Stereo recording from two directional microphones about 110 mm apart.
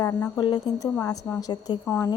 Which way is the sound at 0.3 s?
40° left (ahead or behind).